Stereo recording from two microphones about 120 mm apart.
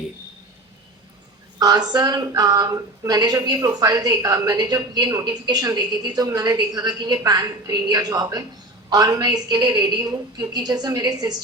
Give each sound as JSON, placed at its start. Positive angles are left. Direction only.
{"t": 1.5, "sound": "speech", "side_deg": -35}